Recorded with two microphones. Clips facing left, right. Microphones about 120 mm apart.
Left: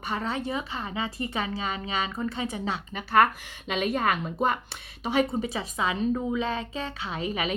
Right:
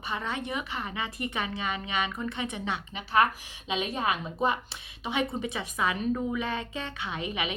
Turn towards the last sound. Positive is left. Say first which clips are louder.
# left 3 dB
turn(degrees=35)  # may be behind; listen again after turning